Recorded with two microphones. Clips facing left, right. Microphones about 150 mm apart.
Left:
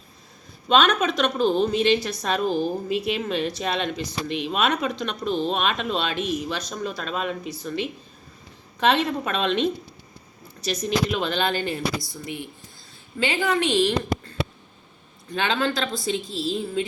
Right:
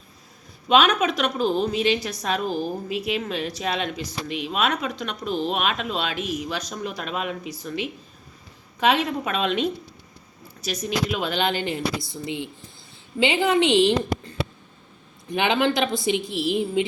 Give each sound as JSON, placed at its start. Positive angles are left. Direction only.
{"t": 0.7, "sound": "a woman's voice", "side_deg": -10}